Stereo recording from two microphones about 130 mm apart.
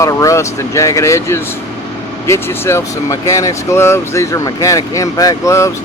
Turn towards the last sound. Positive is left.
turn(degrees=20)  # may be behind; listen again after turning